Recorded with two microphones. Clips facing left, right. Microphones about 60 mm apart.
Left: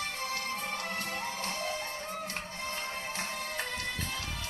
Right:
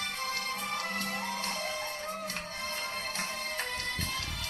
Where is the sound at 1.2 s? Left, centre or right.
Right.